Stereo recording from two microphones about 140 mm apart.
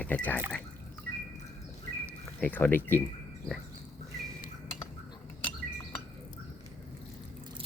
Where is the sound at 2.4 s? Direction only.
10° left (ahead or behind).